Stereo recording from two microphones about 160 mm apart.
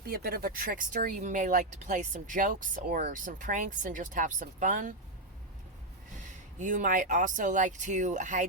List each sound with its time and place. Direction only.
0.0 s speech: 70° right (ahead or behind); by 4.9 s 55° right (ahead or behind)
6.2 s speech: 50° right (ahead or behind)